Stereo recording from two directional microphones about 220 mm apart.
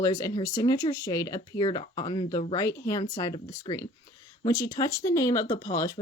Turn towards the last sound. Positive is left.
turn(degrees=15)  # may be behind; listen again after turning